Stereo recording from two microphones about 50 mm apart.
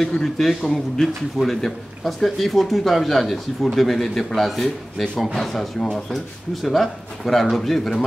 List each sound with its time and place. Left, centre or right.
0.2 s a man's voice: centre